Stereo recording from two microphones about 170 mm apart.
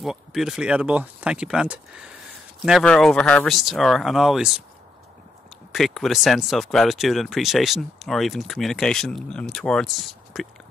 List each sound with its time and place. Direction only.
0.0 s speech: centre (ahead or behind)
5.7 s speech: centre (ahead or behind)